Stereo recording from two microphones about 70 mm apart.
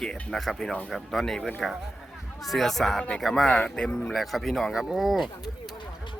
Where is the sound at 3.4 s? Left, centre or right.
Centre.